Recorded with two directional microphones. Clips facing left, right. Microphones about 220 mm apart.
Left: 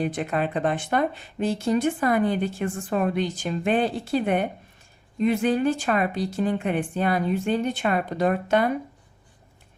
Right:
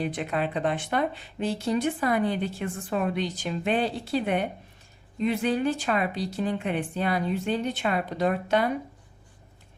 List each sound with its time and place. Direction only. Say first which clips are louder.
0.0 s speech: left 3 dB; 45° left (ahead or behind)